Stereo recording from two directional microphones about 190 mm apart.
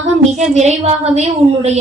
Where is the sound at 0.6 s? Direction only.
35° right (ahead or behind).